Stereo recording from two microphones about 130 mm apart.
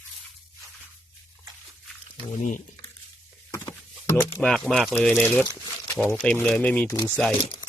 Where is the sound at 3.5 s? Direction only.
30° left (ahead or behind).